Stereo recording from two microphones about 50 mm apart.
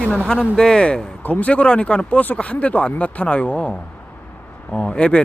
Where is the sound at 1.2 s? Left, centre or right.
Left.